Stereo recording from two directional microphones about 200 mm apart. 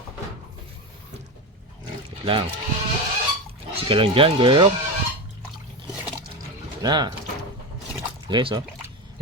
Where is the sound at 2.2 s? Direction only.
25° right (ahead or behind).